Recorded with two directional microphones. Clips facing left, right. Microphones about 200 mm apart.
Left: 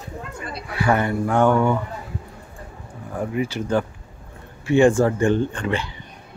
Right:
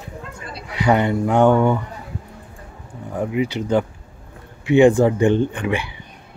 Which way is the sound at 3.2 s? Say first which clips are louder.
Right 3 dB; 15° right (ahead or behind).